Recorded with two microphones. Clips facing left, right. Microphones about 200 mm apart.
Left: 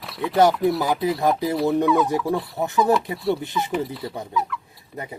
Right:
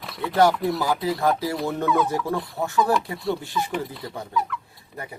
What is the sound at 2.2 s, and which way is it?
Speech, centre (ahead or behind).